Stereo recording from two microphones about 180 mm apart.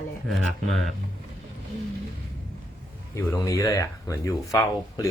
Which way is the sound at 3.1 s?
15° left (ahead or behind).